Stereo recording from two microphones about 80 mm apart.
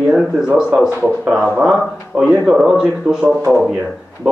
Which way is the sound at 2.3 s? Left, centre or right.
Centre.